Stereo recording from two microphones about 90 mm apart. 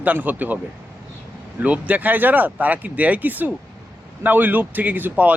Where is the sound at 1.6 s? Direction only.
15° right (ahead or behind).